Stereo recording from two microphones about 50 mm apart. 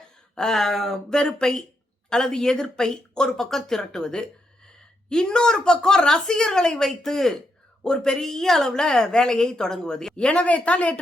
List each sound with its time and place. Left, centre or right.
0.3 s a sound: centre
1.1 s a woman's voice: centre
10.2 s speech: left